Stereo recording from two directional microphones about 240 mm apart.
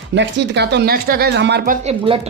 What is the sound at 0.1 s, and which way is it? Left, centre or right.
Speech, right.